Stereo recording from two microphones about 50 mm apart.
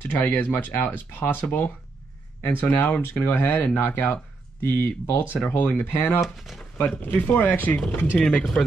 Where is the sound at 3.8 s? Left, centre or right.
Left.